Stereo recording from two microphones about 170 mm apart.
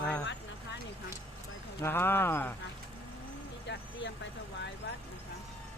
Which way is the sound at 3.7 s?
90° left.